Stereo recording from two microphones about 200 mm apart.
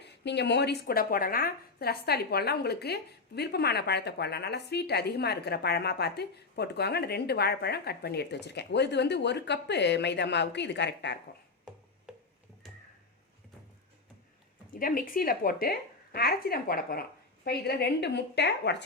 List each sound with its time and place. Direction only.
0.0 s a woman's voice: 60° left (ahead or behind)
12.1 s a sound: 5° right (ahead or behind)
14.7 s a woman's voice: 45° left (ahead or behind)